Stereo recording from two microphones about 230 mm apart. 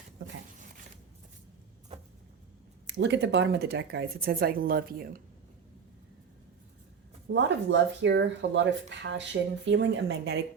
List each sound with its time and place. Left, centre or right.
2.8 s speech: right
7.3 s speech: right